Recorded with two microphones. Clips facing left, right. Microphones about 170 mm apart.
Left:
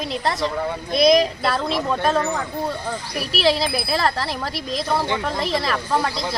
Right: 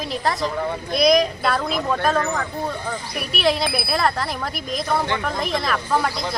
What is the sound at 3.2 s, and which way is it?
Speech, 30° left (ahead or behind).